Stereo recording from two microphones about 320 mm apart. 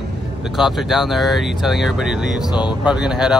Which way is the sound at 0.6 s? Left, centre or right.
Centre.